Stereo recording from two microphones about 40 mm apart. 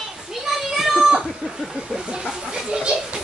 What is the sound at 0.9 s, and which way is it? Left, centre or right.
Cat, centre.